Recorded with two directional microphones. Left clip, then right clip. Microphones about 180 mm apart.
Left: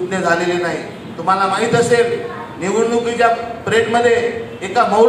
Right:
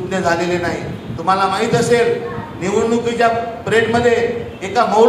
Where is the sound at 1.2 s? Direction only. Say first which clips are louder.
Even; 45° right (ahead or behind).